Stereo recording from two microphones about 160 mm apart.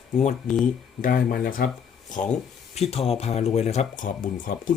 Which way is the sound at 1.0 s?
60° left (ahead or behind).